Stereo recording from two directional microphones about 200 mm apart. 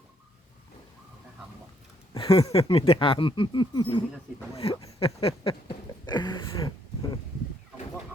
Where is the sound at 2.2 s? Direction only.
30° left (ahead or behind).